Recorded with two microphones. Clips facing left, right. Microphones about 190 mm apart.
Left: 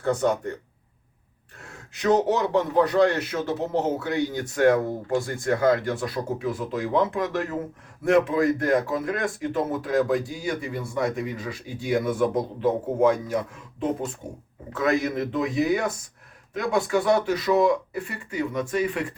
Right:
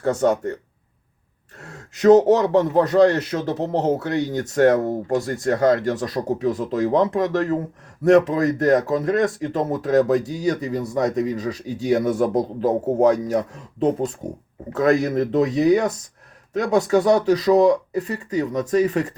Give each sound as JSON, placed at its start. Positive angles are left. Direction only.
{"t": 0.0, "sound": "speech", "side_deg": -40}
{"t": 2.0, "sound": "speech", "side_deg": -40}